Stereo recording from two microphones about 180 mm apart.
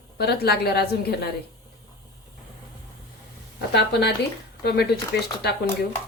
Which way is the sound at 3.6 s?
65° left (ahead or behind).